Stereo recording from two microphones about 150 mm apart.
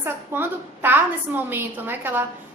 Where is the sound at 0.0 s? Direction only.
15° right (ahead or behind).